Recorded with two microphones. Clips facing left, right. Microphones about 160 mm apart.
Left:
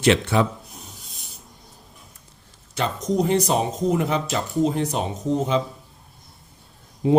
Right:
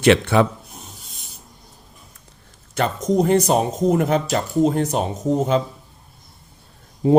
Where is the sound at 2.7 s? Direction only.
50° right (ahead or behind).